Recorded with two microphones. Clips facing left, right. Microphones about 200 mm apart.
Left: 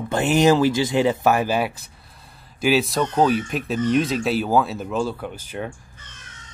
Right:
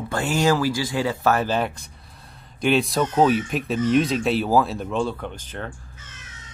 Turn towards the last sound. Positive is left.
turn(degrees=10)  # may be behind; listen again after turning